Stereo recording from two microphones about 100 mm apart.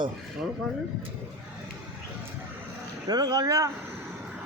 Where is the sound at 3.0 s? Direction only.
40° right (ahead or behind).